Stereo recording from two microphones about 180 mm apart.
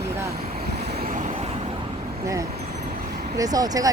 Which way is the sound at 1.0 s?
45° right (ahead or behind).